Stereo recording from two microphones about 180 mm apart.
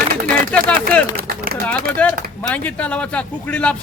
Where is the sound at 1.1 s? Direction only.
55° right (ahead or behind).